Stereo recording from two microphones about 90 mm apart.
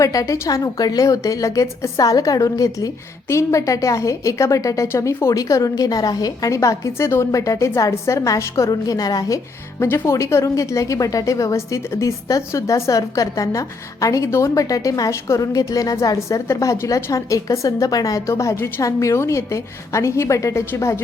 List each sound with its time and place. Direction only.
0.0 s a woman's voice: 40° left (ahead or behind)
9.8 s a woman's voice: 25° left (ahead or behind)